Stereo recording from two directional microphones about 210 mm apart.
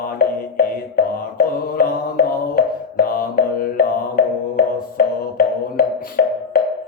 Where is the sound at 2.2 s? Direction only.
45° left (ahead or behind).